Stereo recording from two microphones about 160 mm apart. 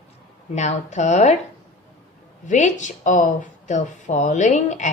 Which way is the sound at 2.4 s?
50° left (ahead or behind).